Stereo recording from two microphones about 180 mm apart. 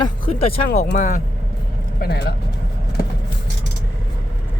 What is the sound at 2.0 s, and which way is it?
Speech, 65° left (ahead or behind).